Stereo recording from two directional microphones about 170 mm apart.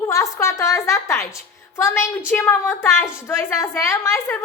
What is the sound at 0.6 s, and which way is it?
Speech, 15° left (ahead or behind).